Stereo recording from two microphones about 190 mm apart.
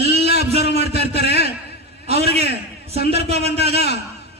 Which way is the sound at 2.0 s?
35° right (ahead or behind).